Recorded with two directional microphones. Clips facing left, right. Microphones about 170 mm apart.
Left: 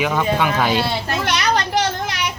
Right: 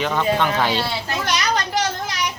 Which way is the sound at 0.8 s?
60° left (ahead or behind).